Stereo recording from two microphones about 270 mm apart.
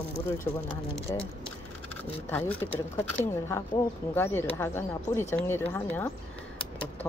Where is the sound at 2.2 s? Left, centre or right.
Centre.